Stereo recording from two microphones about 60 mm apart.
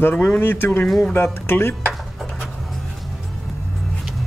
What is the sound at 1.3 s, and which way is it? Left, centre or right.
Speech, left.